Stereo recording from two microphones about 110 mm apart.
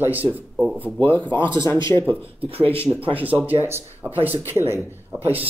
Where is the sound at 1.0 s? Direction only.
15° left (ahead or behind).